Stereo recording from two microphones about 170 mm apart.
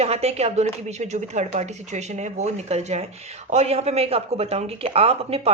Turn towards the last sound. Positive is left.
turn(degrees=-35)  # may be behind; listen again after turning